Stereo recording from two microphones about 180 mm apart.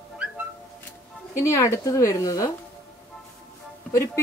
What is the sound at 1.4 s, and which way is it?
A woman's voice, 15° left (ahead or behind).